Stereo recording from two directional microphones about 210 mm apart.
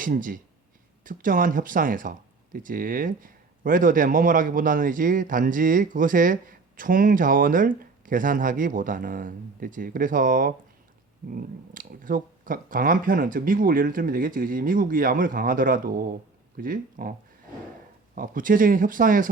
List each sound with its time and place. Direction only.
0.0 s speech: 40° right (ahead or behind)